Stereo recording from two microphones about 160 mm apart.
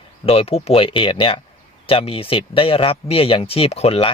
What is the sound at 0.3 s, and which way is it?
Speech, 40° left (ahead or behind).